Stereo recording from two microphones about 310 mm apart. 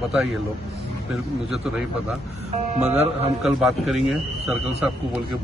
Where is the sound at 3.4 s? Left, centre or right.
Centre.